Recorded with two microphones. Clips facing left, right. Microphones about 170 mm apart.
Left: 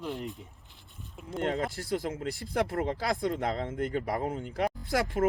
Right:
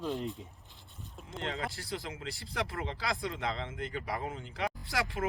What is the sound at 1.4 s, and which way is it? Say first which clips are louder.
Speech: left 7 dB; 45° left (ahead or behind).